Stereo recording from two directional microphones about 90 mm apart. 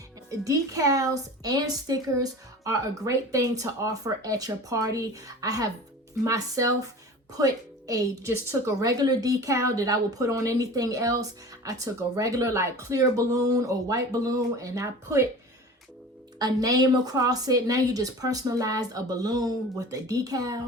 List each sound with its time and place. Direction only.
0.3 s a woman's voice: 40° right (ahead or behind)
8.8 s a woman's voice: 45° right (ahead or behind)
16.4 s a woman's voice: 40° right (ahead or behind)